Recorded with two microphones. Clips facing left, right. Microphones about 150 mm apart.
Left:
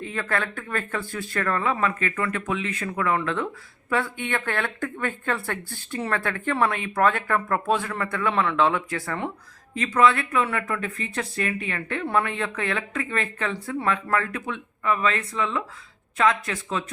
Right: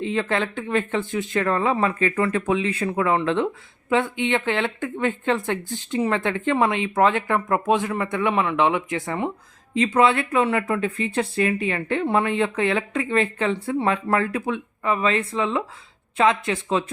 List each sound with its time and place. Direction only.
0.0 s speech: 25° right (ahead or behind)